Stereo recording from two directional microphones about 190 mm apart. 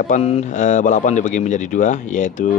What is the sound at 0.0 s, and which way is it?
Speech, 35° left (ahead or behind).